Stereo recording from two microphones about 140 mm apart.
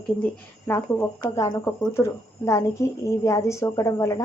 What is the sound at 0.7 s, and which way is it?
A woman's voice, 15° left (ahead or behind).